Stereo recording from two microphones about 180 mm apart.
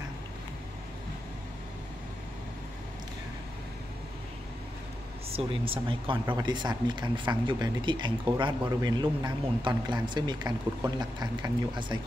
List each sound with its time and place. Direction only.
5.3 s speech: 30° right (ahead or behind)